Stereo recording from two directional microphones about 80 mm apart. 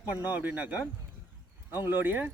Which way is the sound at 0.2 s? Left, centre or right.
Right.